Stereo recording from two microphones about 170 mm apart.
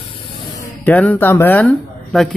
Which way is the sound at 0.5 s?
15° left (ahead or behind).